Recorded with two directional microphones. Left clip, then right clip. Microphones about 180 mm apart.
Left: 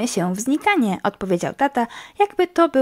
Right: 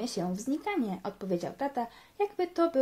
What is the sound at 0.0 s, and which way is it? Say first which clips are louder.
Speech: left 11 dB; 40° left (ahead or behind).